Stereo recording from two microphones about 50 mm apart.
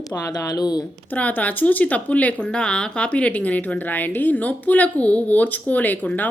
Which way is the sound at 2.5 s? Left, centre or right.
Centre.